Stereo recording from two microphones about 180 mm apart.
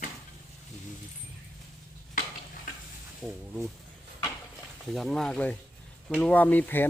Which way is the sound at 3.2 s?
Centre (ahead or behind).